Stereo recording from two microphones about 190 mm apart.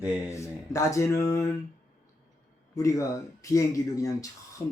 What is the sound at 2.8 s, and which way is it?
Speech, 15° left (ahead or behind).